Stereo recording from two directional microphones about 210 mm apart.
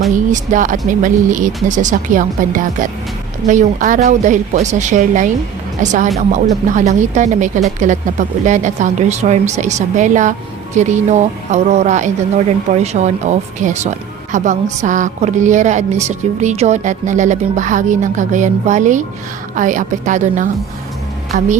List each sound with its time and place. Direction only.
0.3 s a woman's voice: 35° right (ahead or behind)